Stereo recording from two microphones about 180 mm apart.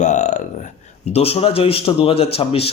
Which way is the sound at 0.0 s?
40° left (ahead or behind).